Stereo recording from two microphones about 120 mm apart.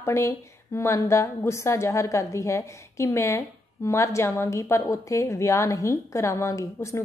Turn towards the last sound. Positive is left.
turn(degrees=25)  # may be behind; listen again after turning